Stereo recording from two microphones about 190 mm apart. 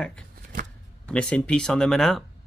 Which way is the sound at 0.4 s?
45° right (ahead or behind).